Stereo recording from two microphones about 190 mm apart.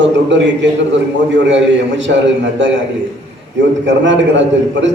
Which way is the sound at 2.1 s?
65° right (ahead or behind).